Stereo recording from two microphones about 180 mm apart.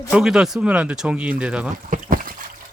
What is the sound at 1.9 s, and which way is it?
Trickle, 50° right (ahead or behind).